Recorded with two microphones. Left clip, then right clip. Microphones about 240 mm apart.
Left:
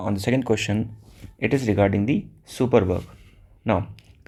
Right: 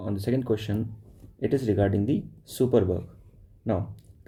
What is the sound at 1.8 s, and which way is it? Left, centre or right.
Speech, left.